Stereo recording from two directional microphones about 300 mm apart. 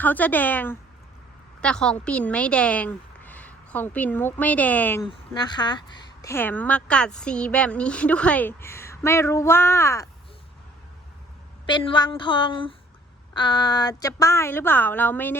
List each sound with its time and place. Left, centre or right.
0.0 s a woman's voice: centre
11.7 s a woman's voice: centre